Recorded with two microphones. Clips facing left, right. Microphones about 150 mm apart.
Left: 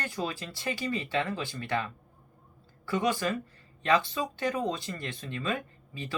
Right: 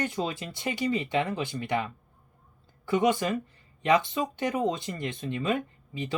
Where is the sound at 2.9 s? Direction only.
20° right (ahead or behind).